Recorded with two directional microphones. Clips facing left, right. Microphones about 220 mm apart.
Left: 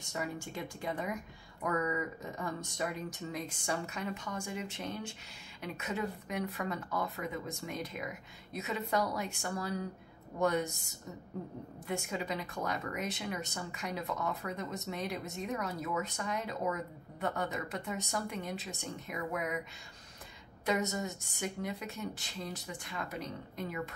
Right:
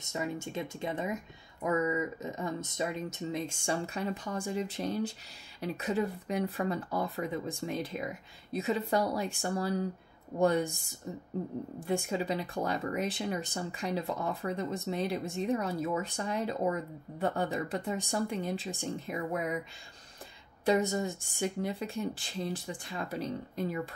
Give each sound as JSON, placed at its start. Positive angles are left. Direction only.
{"t": 0.0, "sound": "speech", "side_deg": -20}
{"t": 11.8, "sound": "speech", "side_deg": -30}
{"t": 20.6, "sound": "speech", "side_deg": -30}